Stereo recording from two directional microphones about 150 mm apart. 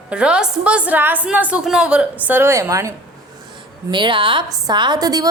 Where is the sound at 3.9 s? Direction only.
30° right (ahead or behind).